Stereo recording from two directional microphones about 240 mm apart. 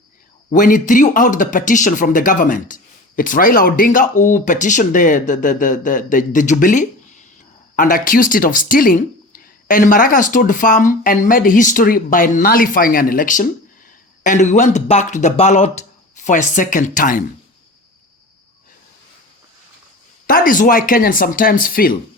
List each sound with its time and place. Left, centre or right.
0.5 s speech: left
20.2 s speech: left